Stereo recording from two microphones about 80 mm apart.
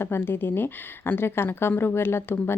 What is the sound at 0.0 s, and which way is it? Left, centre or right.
Speech, left.